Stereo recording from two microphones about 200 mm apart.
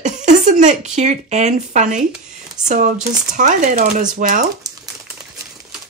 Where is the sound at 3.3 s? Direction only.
40° right (ahead or behind).